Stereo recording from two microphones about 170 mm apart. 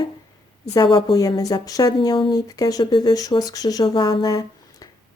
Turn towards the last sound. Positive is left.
turn(degrees=20)  # may be behind; listen again after turning